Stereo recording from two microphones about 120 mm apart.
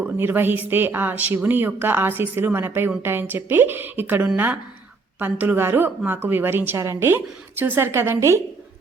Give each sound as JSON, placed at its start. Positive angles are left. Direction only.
{"t": 0.0, "sound": "a woman's voice", "side_deg": -15}